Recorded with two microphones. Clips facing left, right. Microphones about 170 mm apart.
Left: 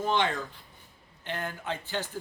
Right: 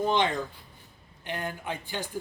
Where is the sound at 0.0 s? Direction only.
15° right (ahead or behind).